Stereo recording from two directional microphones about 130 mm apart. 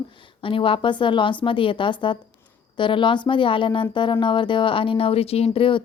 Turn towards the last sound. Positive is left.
turn(degrees=45)  # may be behind; listen again after turning